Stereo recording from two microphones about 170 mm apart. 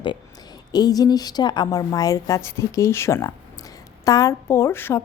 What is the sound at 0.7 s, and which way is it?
A woman's voice, 25° left (ahead or behind).